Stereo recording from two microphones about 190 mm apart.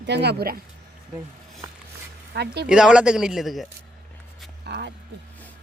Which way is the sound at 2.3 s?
60° right (ahead or behind).